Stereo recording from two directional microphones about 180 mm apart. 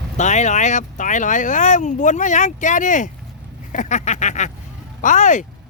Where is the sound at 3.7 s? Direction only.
45° left (ahead or behind).